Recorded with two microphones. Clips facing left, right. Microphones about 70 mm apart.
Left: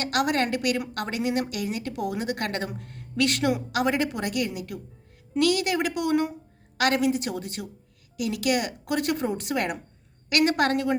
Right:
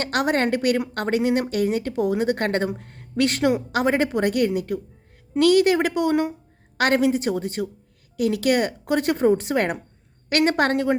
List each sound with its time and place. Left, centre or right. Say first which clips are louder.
0.0 s a woman's voice: right 3 dB; right